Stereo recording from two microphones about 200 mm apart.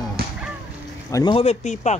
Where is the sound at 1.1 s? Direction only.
25° left (ahead or behind).